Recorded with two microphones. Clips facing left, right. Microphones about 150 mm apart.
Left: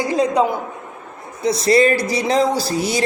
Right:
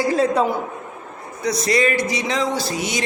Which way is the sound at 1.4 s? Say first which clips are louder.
Left 5 dB; 30° left (ahead or behind).